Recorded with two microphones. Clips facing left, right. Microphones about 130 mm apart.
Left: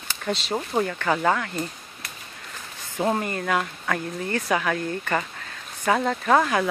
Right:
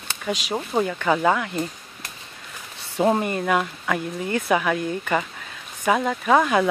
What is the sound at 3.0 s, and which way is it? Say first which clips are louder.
Speech: right 4 dB; 20° right (ahead or behind).